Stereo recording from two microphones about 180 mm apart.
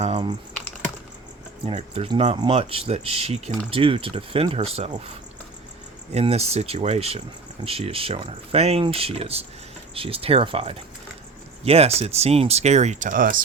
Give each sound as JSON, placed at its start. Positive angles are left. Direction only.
{"t": 1.6, "sound": "speech", "side_deg": -35}
{"t": 6.1, "sound": "speech", "side_deg": -35}